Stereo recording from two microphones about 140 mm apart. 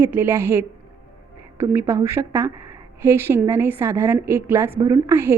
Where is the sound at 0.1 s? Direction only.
15° right (ahead or behind).